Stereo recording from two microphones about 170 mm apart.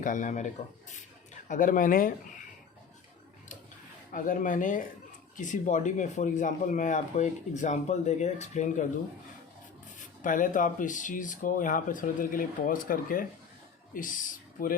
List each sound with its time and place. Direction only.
0.0 s speech: 50° left (ahead or behind)
4.1 s speech: 50° left (ahead or behind)
10.2 s speech: 50° left (ahead or behind)